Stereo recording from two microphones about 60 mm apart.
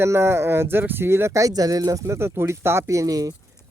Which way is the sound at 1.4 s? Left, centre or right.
Right.